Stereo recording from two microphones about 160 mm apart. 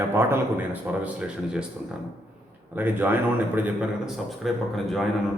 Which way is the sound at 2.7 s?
10° right (ahead or behind).